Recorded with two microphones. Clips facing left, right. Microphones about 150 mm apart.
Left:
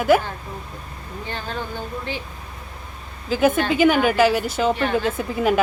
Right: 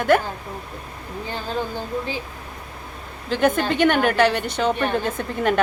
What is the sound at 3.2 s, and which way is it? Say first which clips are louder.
A woman's voice: left 1 dB; 5° left (ahead or behind).